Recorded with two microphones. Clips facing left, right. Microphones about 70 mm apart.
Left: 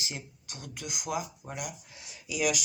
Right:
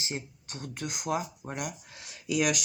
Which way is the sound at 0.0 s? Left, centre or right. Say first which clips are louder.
Right 4 dB; right.